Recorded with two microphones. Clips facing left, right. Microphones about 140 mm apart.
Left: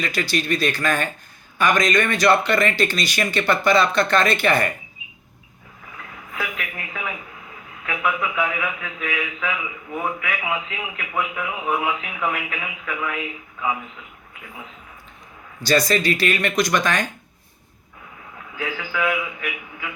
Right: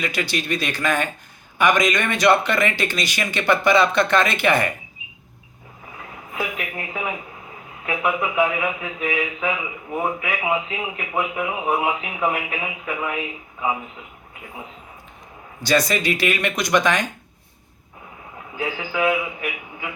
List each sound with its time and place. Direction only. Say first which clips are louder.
0.0 s speech: left 1 dB; 20° right (ahead or behind)
6.3 s a sound: right 2 dB; 25° right (ahead or behind)
7.9 s speech: right 2 dB; 25° right (ahead or behind)
15.6 s speech: left 1 dB; 15° right (ahead or behind)
18.5 s speech: right 2 dB; 25° right (ahead or behind)